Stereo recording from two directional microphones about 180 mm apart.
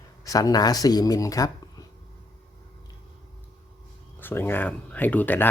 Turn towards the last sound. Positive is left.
turn(degrees=10)  # may be behind; listen again after turning